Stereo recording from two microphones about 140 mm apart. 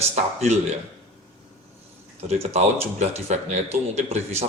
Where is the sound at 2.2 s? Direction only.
50° right (ahead or behind).